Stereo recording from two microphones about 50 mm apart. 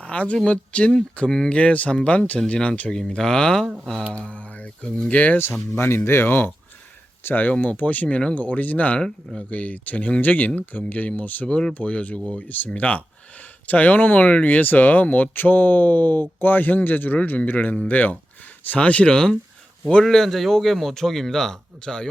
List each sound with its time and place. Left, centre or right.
0.0 s speech: left
3.2 s a man's voice: centre
4.1 s speech: left
5.7 s speech: left
7.3 s speech: left
8.4 s speech: left
9.0 s a man's voice: centre
9.5 s speech: left
11.4 s speech: centre
11.7 s speech: left
20.1 s a man's voice: centre